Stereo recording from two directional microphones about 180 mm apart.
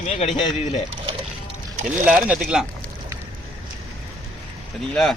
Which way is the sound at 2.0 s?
5° right (ahead or behind).